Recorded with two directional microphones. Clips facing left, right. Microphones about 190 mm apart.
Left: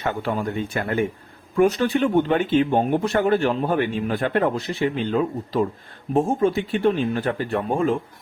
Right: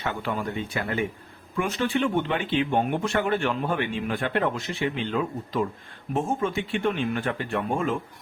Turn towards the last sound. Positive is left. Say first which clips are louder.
# left 5 dB
turn(degrees=35)  # may be behind; listen again after turning